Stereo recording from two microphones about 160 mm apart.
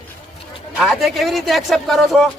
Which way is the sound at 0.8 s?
Centre (ahead or behind).